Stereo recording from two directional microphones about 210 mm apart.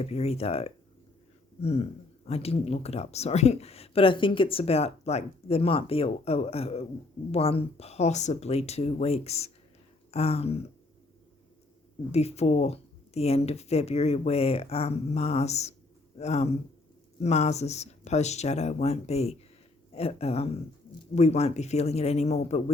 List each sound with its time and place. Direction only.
0.0 s speech: 30° left (ahead or behind)
12.1 s speech: 30° left (ahead or behind)